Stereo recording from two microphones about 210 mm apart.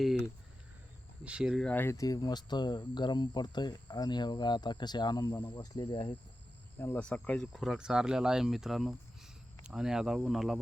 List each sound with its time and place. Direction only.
1.2 s speech: 5° right (ahead or behind); by 6.1 s 20° left (ahead or behind)
6.7 s speech: 10° left (ahead or behind)